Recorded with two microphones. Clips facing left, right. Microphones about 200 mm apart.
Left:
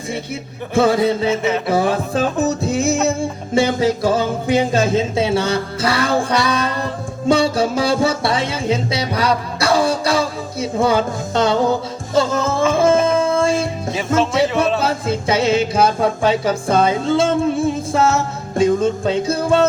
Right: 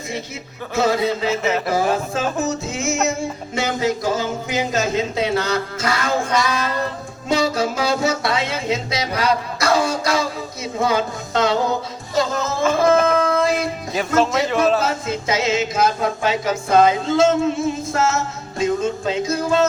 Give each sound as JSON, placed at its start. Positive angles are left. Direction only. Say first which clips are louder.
{"t": 0.7, "sound": "music", "louder": "left 4 dB", "side_deg": 30}
{"t": 1.4, "sound": "a sound", "louder": "left 2 dB", "side_deg": 0}
{"t": 1.7, "sound": "music", "louder": "left 3 dB", "side_deg": 35}
{"t": 12.8, "sound": "music", "louder": "even", "side_deg": 25}
{"t": 13.9, "sound": "speech", "louder": "even", "side_deg": 0}
{"t": 14.8, "sound": "music", "louder": "left 3 dB", "side_deg": 30}